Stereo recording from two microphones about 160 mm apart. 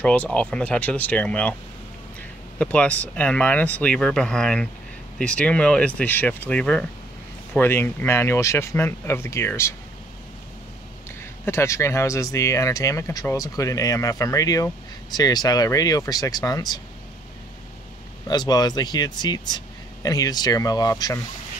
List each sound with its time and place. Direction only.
0.0 s speech: 10° left (ahead or behind)
2.6 s speech: 10° left (ahead or behind)
11.4 s speech: 15° left (ahead or behind)
18.2 s speech: 25° left (ahead or behind)